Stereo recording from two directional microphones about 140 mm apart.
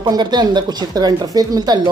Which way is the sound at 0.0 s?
30° right (ahead or behind).